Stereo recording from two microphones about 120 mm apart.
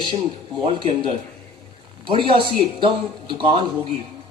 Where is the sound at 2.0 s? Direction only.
45° right (ahead or behind).